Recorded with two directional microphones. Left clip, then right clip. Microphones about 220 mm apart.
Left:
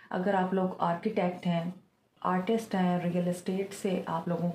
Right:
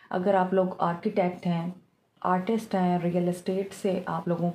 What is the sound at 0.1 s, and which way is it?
Speech, 50° right (ahead or behind).